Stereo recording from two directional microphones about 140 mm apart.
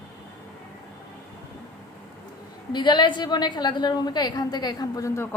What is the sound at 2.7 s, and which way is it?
A woman's voice, 35° left (ahead or behind).